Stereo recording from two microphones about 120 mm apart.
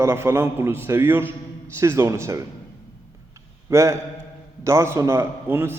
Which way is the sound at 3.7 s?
25° right (ahead or behind).